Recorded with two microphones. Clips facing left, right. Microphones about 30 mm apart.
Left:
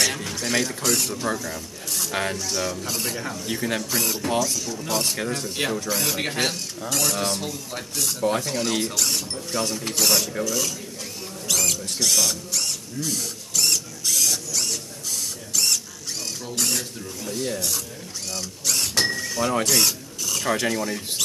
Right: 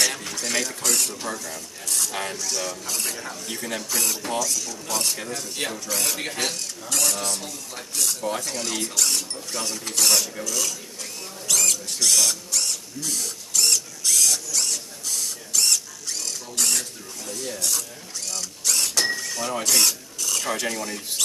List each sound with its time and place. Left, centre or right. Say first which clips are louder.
0.0 s speech: left 1 dB; centre
4.0 s speech: left 2 dB; centre
6.1 s speech: left 3 dB; centre
6.9 s speech: left 1 dB; centre
7.2 s speech: left 4 dB; centre
8.0 s speech: left 3 dB; centre
11.4 s rodents: even; centre
16.5 s a sound: even; centre
17.3 s speech: left 4 dB; centre
18.3 s speech: even; centre
19.0 s vehicle: left 2 dB; centre
19.6 s mechanisms: left 1 dB; centre
20.5 s speech: left 4 dB; centre